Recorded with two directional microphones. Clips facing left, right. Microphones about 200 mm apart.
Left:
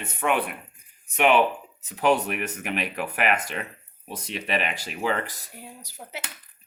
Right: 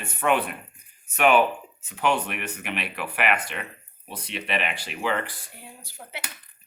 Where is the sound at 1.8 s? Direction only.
35° left (ahead or behind).